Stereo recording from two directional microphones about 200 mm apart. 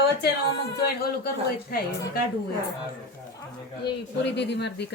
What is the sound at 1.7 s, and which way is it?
Speech, 50° left (ahead or behind).